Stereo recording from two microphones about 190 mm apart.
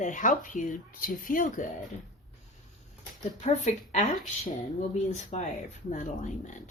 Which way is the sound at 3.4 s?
40° left (ahead or behind).